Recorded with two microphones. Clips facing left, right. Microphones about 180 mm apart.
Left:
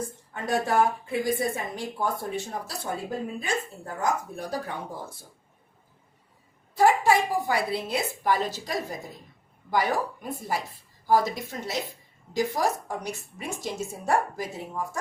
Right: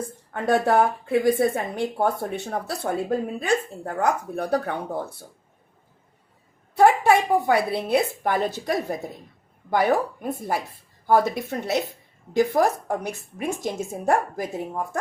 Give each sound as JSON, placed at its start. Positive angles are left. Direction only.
{"t": 0.3, "sound": "speech", "side_deg": -60}
{"t": 6.7, "sound": "a woman's voice", "side_deg": -60}